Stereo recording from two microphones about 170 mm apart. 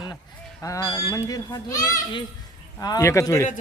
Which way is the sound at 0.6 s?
20° left (ahead or behind).